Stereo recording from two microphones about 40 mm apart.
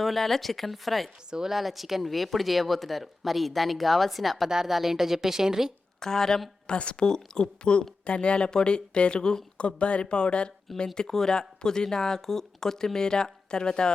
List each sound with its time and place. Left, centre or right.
0.0 s speech: centre
1.3 s speech: centre
4.4 s a woman's voice: centre
6.0 s speech: centre
6.7 s speech: left
10.9 s speech: centre